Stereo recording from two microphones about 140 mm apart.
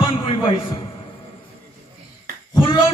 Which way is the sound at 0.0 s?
40° left (ahead or behind).